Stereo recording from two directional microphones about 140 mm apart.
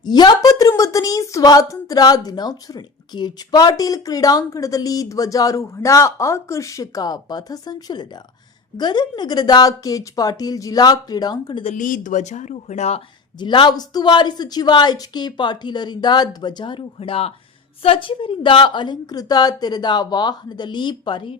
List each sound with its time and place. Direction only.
0.0 s a woman's voice: 30° left (ahead or behind)
11.7 s speech: 65° left (ahead or behind)
13.4 s a woman's voice: 35° left (ahead or behind)